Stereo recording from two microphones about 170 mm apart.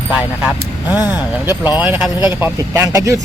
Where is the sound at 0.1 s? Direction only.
5° right (ahead or behind).